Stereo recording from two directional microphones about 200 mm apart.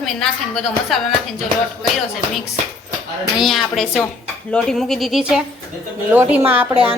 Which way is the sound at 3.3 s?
Centre (ahead or behind).